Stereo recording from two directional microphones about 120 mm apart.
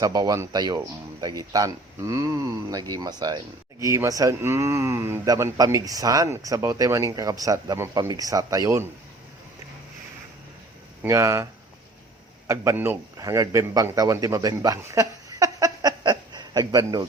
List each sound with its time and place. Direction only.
0.0 s speech: 30° right (ahead or behind)
11.0 s speech: 25° right (ahead or behind)
12.5 s speech: 20° right (ahead or behind)
13.1 s a man's voice: 30° right (ahead or behind)